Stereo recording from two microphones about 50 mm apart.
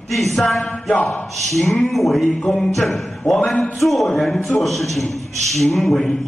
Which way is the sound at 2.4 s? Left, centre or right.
Centre.